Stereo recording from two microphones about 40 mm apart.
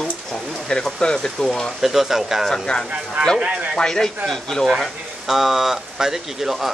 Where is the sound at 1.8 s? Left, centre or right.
Centre.